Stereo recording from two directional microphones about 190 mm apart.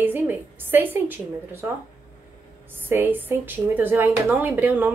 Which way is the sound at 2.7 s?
10° right (ahead or behind).